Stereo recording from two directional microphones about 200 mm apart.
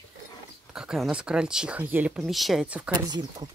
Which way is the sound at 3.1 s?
20° right (ahead or behind).